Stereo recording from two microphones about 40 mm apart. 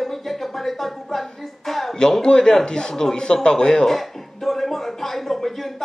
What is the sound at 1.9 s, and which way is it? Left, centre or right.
A man's voice, centre.